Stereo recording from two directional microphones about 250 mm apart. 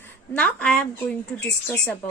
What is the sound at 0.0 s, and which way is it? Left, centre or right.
A woman's voice, centre.